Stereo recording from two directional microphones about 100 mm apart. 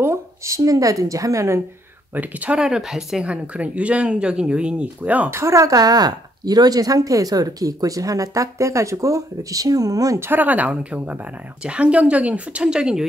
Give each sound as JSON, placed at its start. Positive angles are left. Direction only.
{"t": 0.0, "sound": "a woman's voice", "side_deg": -30}
{"t": 2.1, "sound": "speech", "side_deg": -15}
{"t": 5.3, "sound": "speech", "side_deg": -30}